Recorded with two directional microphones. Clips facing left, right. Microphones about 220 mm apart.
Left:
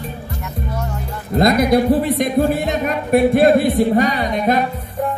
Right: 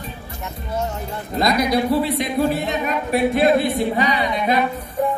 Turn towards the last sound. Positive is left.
turn(degrees=45)  # may be behind; listen again after turning